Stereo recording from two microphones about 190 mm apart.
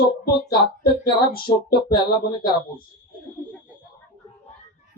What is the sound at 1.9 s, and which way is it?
Speech, 25° left (ahead or behind).